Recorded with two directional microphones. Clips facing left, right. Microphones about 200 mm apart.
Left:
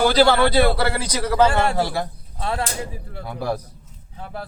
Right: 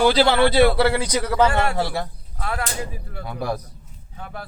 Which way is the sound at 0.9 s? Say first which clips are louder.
Right 4 dB; 20° right (ahead or behind).